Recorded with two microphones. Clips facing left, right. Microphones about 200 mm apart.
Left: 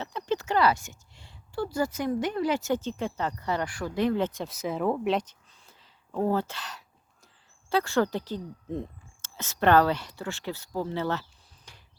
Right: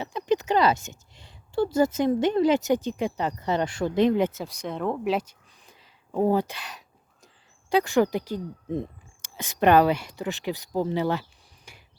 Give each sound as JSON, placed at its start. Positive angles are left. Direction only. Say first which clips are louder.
{"t": 0.0, "sound": "speech", "louder": "right 5 dB", "side_deg": -15}
{"t": 4.4, "sound": "speech", "louder": "left 1 dB", "side_deg": 0}